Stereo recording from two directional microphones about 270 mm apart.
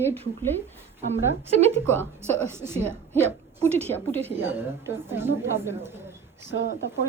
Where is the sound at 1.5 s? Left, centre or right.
Right.